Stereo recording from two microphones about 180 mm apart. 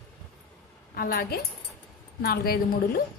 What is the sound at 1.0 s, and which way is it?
A woman's voice, 55° left (ahead or behind).